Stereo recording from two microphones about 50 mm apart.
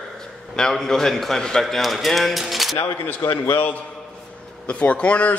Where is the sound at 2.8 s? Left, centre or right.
Left.